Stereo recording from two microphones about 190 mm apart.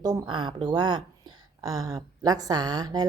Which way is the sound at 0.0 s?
20° right (ahead or behind).